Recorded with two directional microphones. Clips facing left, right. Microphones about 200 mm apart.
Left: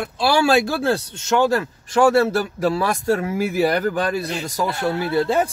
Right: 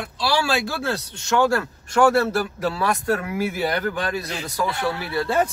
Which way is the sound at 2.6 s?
35° left (ahead or behind).